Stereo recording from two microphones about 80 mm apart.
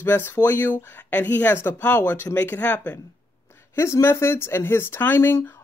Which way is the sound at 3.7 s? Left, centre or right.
Left.